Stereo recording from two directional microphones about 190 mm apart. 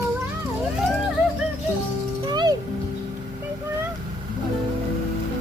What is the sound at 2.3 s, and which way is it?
Music, 20° right (ahead or behind).